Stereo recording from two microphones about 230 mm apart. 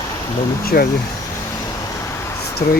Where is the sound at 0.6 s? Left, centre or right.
Left.